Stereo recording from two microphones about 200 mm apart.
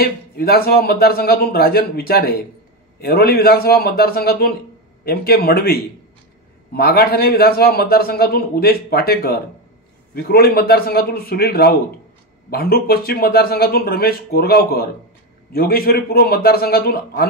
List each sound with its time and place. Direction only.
0.0 s a man's voice: 50° left (ahead or behind)